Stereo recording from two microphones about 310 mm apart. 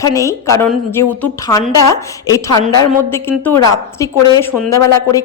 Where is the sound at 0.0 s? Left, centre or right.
Centre.